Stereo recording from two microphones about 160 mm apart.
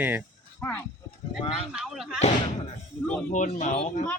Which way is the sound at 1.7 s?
5° right (ahead or behind).